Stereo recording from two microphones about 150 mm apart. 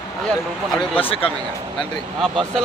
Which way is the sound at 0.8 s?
35° left (ahead or behind).